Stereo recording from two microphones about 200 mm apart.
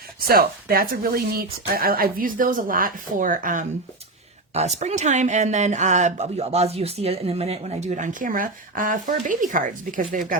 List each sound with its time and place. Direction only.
0.2 s speech: 50° right (ahead or behind)